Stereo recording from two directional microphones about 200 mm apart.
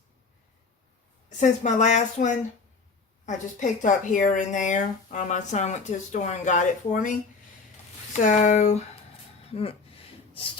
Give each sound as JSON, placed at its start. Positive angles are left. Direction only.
{"t": 1.4, "sound": "speech", "side_deg": 35}
{"t": 8.2, "sound": "speech", "side_deg": 40}